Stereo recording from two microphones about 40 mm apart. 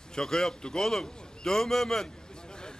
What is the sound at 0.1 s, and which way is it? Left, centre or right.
A man's voice, centre.